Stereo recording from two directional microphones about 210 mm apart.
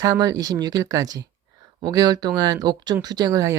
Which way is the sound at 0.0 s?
20° right (ahead or behind).